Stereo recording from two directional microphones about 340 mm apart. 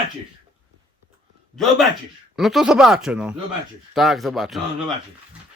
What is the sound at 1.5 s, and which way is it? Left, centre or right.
Speech, centre.